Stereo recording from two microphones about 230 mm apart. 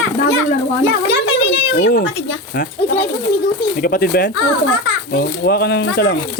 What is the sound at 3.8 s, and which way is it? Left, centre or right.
Speech, left.